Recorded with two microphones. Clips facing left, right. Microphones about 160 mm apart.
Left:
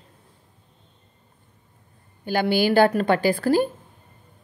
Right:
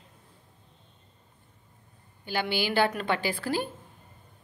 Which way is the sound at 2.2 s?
45° left (ahead or behind).